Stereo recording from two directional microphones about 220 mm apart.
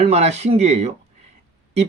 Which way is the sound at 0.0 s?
30° right (ahead or behind).